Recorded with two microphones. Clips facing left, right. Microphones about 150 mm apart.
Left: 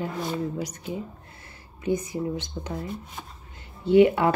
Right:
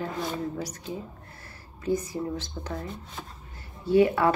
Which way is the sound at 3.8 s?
20° left (ahead or behind).